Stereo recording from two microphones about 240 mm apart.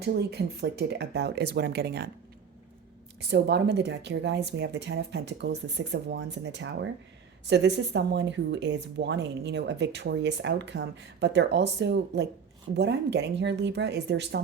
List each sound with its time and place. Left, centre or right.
0.0 s speech: right
3.2 s speech: right